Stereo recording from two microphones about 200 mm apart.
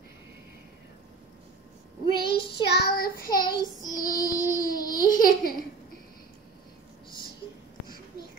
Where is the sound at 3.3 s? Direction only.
20° left (ahead or behind).